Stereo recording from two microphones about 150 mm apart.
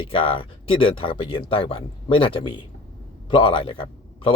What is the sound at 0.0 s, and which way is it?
Speech, 35° left (ahead or behind).